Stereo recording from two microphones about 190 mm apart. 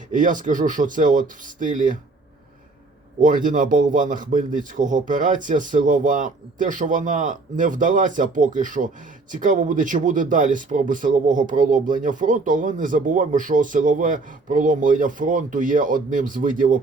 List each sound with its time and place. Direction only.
0.1 s speech: 45° right (ahead or behind)
3.2 s speech: 45° right (ahead or behind)